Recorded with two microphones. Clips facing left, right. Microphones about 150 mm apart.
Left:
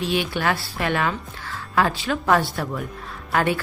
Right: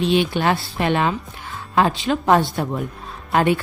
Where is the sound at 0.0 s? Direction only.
20° right (ahead or behind).